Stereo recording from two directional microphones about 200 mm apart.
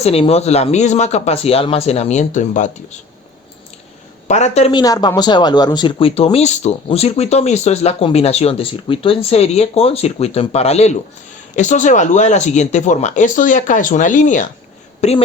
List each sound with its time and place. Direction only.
0.0 s speech: 30° left (ahead or behind)
4.3 s speech: 35° left (ahead or behind)
4.7 s speech: 20° left (ahead or behind)